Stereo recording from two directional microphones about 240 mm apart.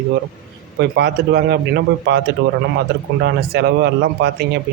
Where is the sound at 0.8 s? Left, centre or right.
Right.